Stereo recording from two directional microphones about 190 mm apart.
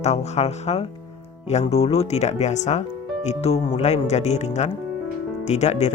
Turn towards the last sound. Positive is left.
turn(degrees=35)  # may be behind; listen again after turning